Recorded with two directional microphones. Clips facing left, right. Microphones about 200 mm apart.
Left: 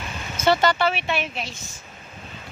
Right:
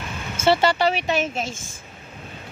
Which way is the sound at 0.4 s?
30° right (ahead or behind).